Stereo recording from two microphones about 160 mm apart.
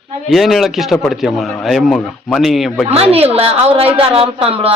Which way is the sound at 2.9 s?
40° right (ahead or behind).